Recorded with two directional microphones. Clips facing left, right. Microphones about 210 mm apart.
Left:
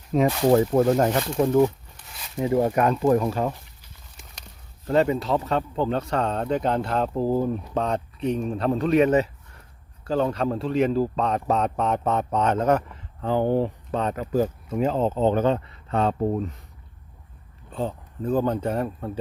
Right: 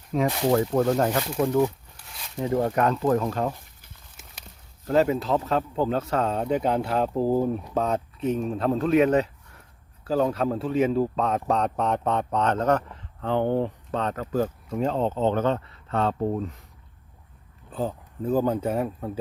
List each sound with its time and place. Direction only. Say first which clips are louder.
0.1 s speech: left 4 dB; 20° left (ahead or behind)
0.7 s speech: left 2 dB; 10° left (ahead or behind)
2.0 s speech: left 2 dB; centre (ahead or behind)
4.9 s speech: even; 5° right (ahead or behind); by 16.1 s 15° left (ahead or behind)
17.7 s speech: even; 5° right (ahead or behind)